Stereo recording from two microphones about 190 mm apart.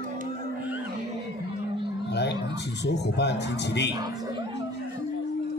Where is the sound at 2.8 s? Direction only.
65° left (ahead or behind).